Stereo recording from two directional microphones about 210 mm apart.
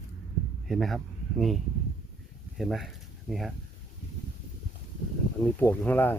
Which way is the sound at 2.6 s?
Centre (ahead or behind).